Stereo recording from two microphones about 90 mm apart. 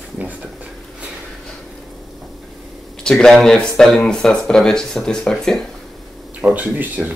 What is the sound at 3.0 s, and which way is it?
Speech, 5° left (ahead or behind).